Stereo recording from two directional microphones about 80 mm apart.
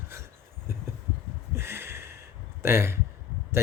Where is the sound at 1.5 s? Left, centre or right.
Right.